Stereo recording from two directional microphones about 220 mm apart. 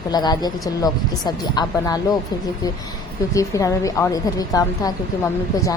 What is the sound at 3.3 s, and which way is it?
A woman's voice, 15° left (ahead or behind).